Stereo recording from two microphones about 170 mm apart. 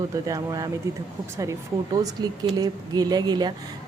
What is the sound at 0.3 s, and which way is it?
Speech, 20° right (ahead or behind).